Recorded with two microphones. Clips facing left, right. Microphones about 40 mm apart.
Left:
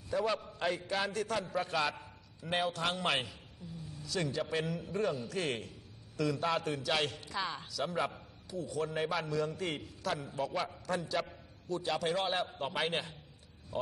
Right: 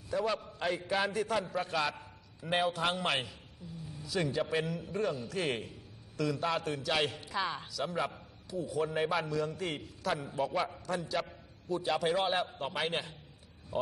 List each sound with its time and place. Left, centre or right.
0.1 s a man's voice: centre
4.0 s a man's voice: centre
6.1 s a man's voice: centre
10.1 s a man's voice: centre
10.9 s a man's voice: centre